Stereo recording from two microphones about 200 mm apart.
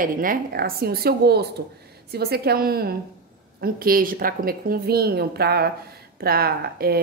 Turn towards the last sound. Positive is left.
turn(degrees=-50)  # may be behind; listen again after turning